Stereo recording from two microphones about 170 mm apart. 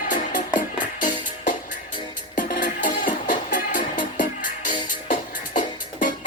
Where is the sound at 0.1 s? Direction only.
50° left (ahead or behind).